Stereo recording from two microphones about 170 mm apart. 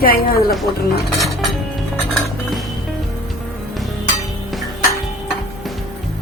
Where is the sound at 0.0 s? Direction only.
60° left (ahead or behind).